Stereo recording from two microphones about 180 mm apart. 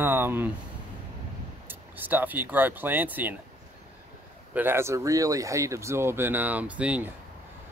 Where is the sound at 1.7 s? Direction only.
10° right (ahead or behind).